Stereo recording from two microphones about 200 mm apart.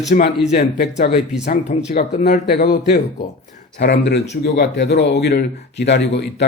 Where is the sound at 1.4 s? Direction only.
35° left (ahead or behind).